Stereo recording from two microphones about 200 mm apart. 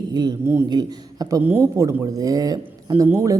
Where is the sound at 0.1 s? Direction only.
20° right (ahead or behind).